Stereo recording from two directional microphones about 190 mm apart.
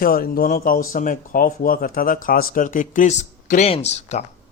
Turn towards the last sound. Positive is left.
turn(degrees=35)  # may be behind; listen again after turning